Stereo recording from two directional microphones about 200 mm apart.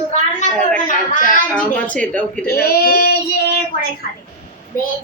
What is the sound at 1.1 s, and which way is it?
Speech, 40° left (ahead or behind).